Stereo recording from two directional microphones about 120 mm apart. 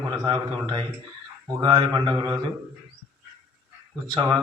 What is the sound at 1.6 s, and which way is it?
Speech, 35° right (ahead or behind).